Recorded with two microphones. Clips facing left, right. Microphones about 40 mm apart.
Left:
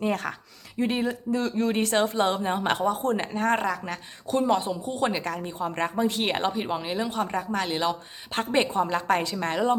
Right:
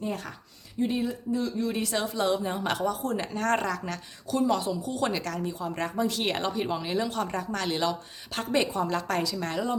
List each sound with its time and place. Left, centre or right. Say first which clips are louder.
0.0 s speech: left 6 dB; left
0.8 s speech: left 2 dB; left
1.7 s a woman's voice: left 6 dB; left
3.3 s speech: left 2 dB; centre
4.3 s speech: left 2 dB; left; by 7.9 s centre
8.3 s a woman's voice: left 2 dB; left